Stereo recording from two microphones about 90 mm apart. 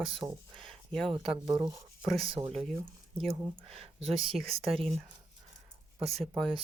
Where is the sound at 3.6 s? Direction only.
90° right.